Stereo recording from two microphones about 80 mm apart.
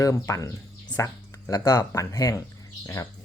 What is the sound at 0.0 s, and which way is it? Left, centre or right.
Speech, left.